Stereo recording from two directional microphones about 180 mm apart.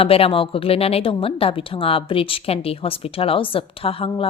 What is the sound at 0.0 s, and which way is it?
A woman's voice, 30° left (ahead or behind).